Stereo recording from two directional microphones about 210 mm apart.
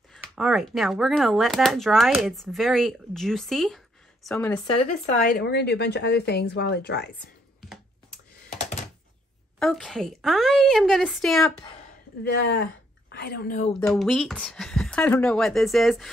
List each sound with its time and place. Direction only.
0.2 s speech: centre (ahead or behind)
4.6 s speech: 30° left (ahead or behind)
5.0 s speech: 45° left (ahead or behind)
8.5 s typing: 35° left (ahead or behind)
9.6 s speech: centre (ahead or behind)
12.2 s speech: 50° left (ahead or behind)
13.8 s speech: centre (ahead or behind)